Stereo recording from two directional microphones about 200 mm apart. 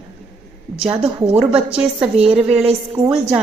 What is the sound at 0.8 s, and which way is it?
Speech, 30° right (ahead or behind).